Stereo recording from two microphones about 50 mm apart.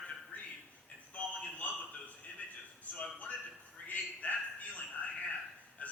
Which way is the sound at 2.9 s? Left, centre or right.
Left.